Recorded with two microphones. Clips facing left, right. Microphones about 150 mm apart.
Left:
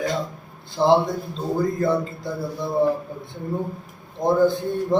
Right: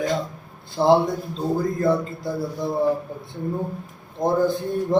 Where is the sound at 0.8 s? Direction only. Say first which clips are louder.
Right 1 dB; 10° right (ahead or behind).